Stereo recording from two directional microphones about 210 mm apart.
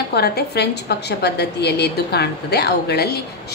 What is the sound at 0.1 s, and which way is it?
A woman's voice, 50° left (ahead or behind).